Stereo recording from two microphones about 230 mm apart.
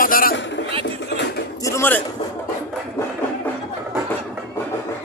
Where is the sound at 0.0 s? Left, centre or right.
Left.